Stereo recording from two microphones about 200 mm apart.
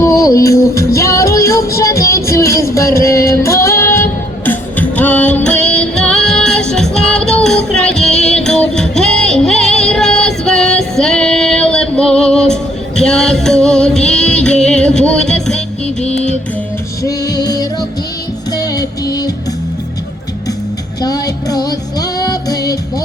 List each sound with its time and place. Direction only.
0.2 s music: 15° left (ahead or behind)
17.0 s music: 20° left (ahead or behind)
21.0 s music: 20° left (ahead or behind)